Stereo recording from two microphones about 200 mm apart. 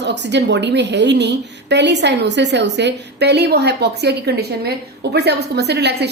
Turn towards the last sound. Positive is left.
turn(degrees=-55)  # may be behind; listen again after turning